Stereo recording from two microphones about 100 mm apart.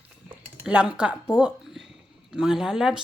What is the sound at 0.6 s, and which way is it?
A woman's voice, 10° right (ahead or behind).